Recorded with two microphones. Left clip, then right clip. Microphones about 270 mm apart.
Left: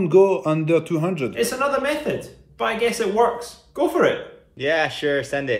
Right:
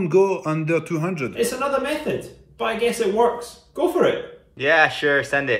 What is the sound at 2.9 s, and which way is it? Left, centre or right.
Speech, left.